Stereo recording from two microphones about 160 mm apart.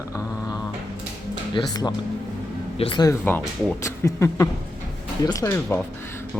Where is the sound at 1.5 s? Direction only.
25° left (ahead or behind).